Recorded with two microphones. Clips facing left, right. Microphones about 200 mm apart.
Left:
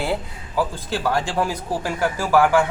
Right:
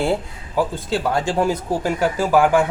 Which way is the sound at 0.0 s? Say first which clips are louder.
Right 4 dB; 25° right (ahead or behind).